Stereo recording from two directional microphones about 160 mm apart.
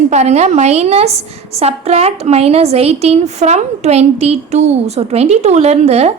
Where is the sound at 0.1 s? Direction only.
45° right (ahead or behind).